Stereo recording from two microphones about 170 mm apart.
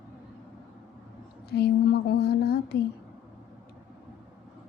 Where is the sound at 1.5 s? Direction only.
70° left (ahead or behind).